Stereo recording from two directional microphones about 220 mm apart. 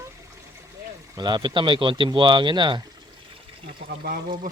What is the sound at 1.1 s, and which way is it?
Speech, 20° right (ahead or behind).